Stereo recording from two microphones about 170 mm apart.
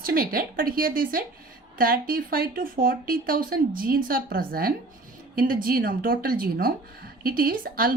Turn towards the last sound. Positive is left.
turn(degrees=-55)  # may be behind; listen again after turning